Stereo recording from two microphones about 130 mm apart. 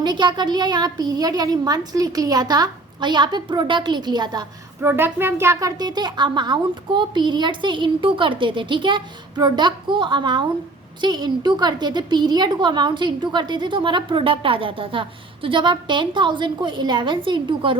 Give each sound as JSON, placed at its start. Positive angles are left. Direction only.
{"t": 0.0, "sound": "a woman's voice", "side_deg": -35}
{"t": 4.8, "sound": "a woman's voice", "side_deg": -20}